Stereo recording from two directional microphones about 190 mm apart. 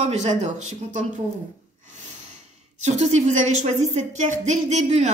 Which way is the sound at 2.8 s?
40° right (ahead or behind).